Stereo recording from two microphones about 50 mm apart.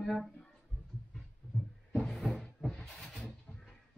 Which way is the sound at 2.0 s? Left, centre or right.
Centre.